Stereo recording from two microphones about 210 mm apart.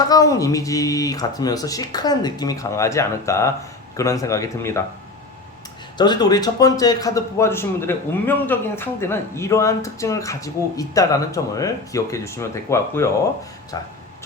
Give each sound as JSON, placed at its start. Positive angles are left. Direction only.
{"t": 0.1, "sound": "a man's voice", "side_deg": 15}
{"t": 6.0, "sound": "a man's voice", "side_deg": 20}